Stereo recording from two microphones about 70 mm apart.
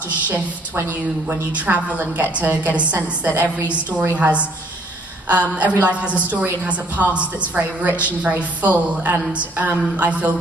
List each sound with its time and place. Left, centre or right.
1.3 s a woman's voice: right